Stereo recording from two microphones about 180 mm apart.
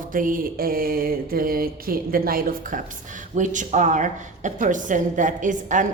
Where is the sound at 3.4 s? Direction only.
45° right (ahead or behind).